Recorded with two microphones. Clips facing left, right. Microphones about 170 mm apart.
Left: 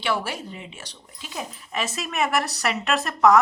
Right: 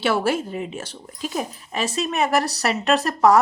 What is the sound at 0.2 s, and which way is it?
Speech, 40° right (ahead or behind).